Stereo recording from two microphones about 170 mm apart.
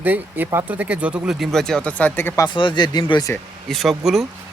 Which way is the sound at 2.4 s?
30° left (ahead or behind).